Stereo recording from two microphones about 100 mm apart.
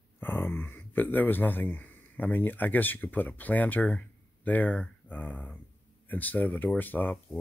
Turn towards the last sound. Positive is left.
turn(degrees=20)  # may be behind; listen again after turning